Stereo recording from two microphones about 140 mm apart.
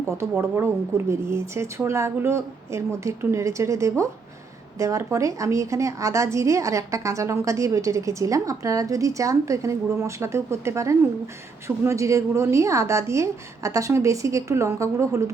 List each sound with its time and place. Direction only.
0.0 s a woman's voice: 20° right (ahead or behind)